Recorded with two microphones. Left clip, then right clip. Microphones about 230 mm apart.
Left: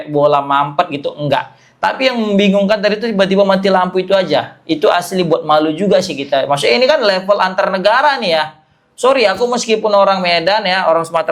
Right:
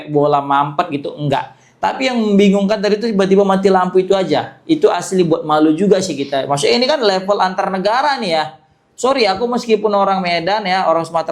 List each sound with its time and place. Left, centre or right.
0.2 s speech: left